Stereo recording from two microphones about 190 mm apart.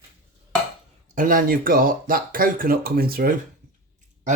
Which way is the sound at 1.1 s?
45° right (ahead or behind).